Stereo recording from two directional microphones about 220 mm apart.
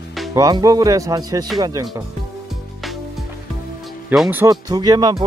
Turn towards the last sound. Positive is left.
turn(degrees=-20)  # may be behind; listen again after turning